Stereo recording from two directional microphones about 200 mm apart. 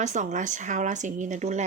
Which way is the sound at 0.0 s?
35° right (ahead or behind).